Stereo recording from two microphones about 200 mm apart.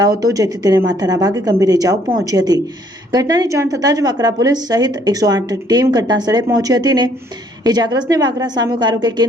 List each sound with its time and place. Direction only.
0.0 s a woman's voice: 20° right (ahead or behind)